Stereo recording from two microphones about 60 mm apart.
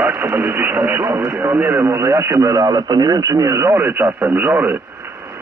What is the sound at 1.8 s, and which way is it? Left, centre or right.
Speech, right.